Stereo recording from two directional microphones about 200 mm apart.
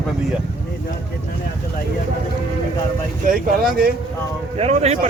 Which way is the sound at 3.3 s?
45° right (ahead or behind).